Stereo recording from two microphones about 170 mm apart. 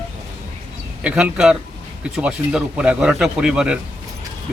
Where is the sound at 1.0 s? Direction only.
5° right (ahead or behind).